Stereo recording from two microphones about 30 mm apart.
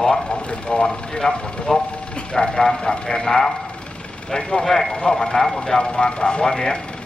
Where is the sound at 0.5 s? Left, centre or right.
Left; by 3.5 s centre.